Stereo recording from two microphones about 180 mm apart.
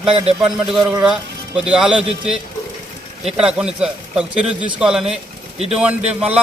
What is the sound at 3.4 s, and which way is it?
A man's voice, 5° right (ahead or behind).